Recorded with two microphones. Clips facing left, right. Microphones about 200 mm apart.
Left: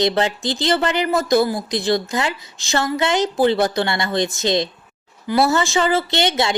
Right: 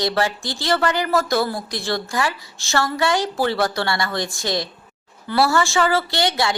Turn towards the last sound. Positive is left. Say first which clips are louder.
# left 2 dB
turn(degrees=20)  # may be behind; listen again after turning